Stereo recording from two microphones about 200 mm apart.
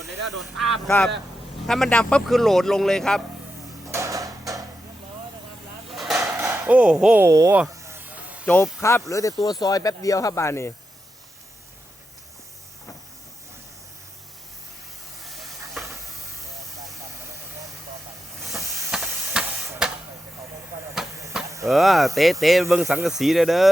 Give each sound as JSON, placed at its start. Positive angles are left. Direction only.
{"t": 0.0, "sound": "speech", "side_deg": 0}
{"t": 3.9, "sound": "a sound", "side_deg": -15}
{"t": 5.9, "sound": "a sound", "side_deg": 0}
{"t": 7.6, "sound": "snake", "side_deg": -10}
{"t": 8.4, "sound": "speech", "side_deg": 10}
{"t": 15.2, "sound": "hiss", "side_deg": 0}
{"t": 18.4, "sound": "hiss", "side_deg": 0}
{"t": 21.3, "sound": "chop", "side_deg": -5}
{"t": 21.7, "sound": "speech", "side_deg": 0}